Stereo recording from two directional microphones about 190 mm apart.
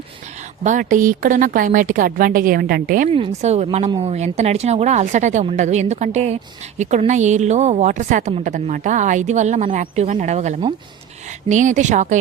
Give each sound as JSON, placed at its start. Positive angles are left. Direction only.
{"t": 0.6, "sound": "a woman's voice", "side_deg": -40}
{"t": 3.1, "sound": "a woman's voice", "side_deg": -30}